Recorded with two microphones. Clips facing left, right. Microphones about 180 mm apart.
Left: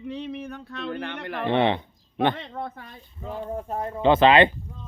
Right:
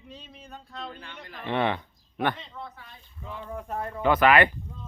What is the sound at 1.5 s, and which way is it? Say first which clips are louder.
Speech: left 4 dB; 25° left (ahead or behind).